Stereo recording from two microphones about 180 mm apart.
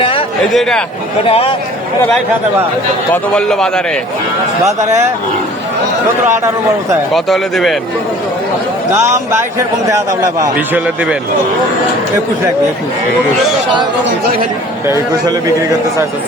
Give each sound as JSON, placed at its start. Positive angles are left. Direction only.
{"t": 0.0, "sound": "a sound", "side_deg": 30}
{"t": 0.5, "sound": "a man's voice", "side_deg": 0}
{"t": 1.2, "sound": "a man's voice", "side_deg": 30}
{"t": 3.1, "sound": "a man's voice", "side_deg": 5}
{"t": 4.6, "sound": "a man's voice", "side_deg": -15}
{"t": 7.1, "sound": "a man's voice", "side_deg": 0}
{"t": 9.1, "sound": "a man's voice", "side_deg": -15}
{"t": 10.8, "sound": "a man's voice", "side_deg": -5}
{"t": 14.8, "sound": "a man's voice", "side_deg": -20}